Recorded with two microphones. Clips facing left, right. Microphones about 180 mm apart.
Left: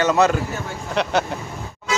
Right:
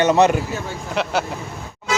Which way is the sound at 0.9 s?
5° right (ahead or behind).